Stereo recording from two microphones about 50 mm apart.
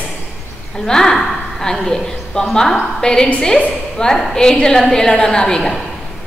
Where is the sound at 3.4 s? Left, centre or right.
Centre.